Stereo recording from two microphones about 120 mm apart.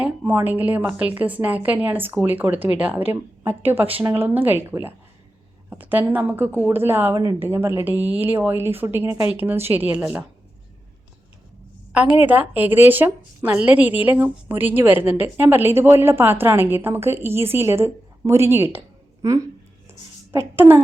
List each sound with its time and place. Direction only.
0.0 s a woman's voice: 15° right (ahead or behind)
12.2 s a woman's voice: 15° right (ahead or behind)
20.3 s speech: 20° right (ahead or behind)